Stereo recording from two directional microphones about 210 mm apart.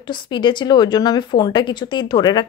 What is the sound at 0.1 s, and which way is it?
A woman's voice, 20° left (ahead or behind).